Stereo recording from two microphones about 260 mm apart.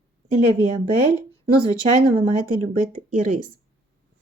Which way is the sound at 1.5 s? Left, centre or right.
Right.